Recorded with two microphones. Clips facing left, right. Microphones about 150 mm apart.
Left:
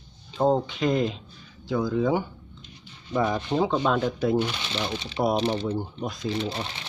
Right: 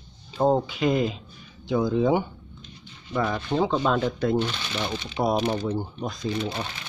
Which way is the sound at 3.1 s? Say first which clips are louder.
Left 1 dB; 15° left (ahead or behind).